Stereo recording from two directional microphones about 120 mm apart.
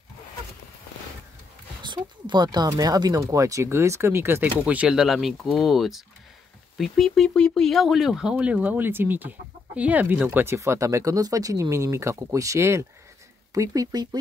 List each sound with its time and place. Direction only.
1.8 s speech: 40° right (ahead or behind)